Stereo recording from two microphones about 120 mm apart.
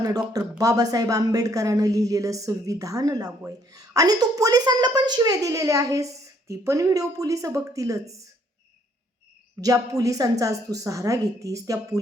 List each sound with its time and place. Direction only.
0.0 s a woman's voice: 30° right (ahead or behind)
9.6 s a woman's voice: 30° right (ahead or behind)